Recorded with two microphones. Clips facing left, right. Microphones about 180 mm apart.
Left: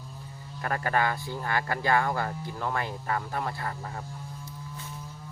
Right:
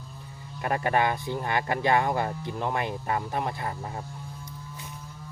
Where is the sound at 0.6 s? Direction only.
20° right (ahead or behind).